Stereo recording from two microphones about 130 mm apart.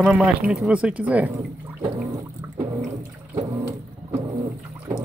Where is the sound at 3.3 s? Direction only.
25° right (ahead or behind).